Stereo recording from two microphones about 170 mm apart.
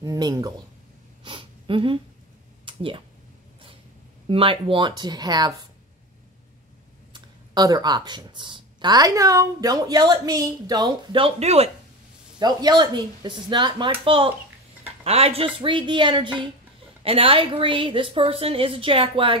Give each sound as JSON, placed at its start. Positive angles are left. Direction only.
{"t": 0.0, "sound": "speech", "side_deg": -20}
{"t": 1.2, "sound": "wheeze", "side_deg": -30}
{"t": 2.6, "sound": "a sound", "side_deg": -30}
{"t": 4.3, "sound": "speech", "side_deg": -30}
{"t": 7.1, "sound": "speech", "side_deg": -25}
{"t": 12.4, "sound": "a woman's voice", "side_deg": -25}